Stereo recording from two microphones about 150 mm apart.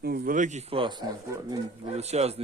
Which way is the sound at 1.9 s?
45° right (ahead or behind).